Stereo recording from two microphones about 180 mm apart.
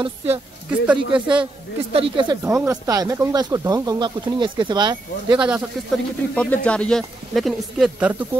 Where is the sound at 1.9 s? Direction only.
30° right (ahead or behind).